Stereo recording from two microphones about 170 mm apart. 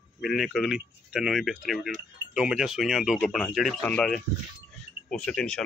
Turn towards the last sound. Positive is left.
turn(degrees=5)  # may be behind; listen again after turning